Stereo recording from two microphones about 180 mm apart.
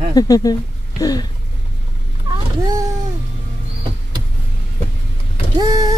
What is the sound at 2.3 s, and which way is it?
Vehicle, 20° right (ahead or behind).